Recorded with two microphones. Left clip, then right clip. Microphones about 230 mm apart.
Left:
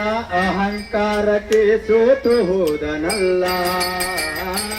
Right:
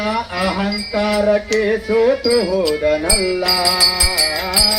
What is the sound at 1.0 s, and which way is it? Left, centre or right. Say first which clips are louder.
Music: right 2 dB; left.